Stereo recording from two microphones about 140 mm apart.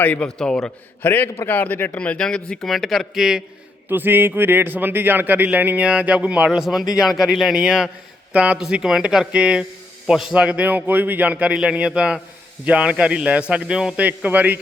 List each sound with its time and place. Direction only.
0.0 s a man's voice: 10° left (ahead or behind)
3.8 s a man's voice: 15° right (ahead or behind)